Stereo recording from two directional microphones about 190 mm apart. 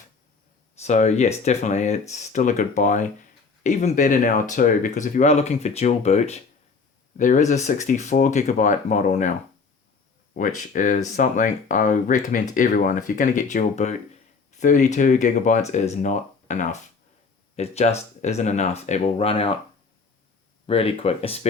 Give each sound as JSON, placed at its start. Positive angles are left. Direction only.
{"t": 0.8, "sound": "speech", "side_deg": 35}
{"t": 10.3, "sound": "speech", "side_deg": 45}
{"t": 20.7, "sound": "speech", "side_deg": 30}